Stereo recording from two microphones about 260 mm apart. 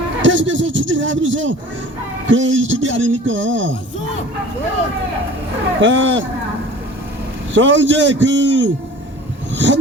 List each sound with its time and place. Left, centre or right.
0.2 s speech: right
5.8 s speech: right
7.5 s speech: right